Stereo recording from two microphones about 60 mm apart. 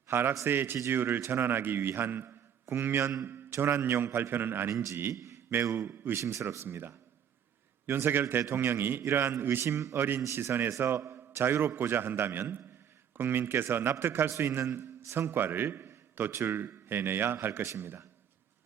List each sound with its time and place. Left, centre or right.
0.1 s a man's voice: right
4.7 s a man's voice: right
5.7 s a man's voice: right
6.2 s a man's voice: right
11.3 s a man's voice: right